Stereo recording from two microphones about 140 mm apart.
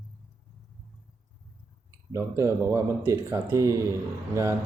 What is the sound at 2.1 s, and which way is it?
Speech, 20° right (ahead or behind).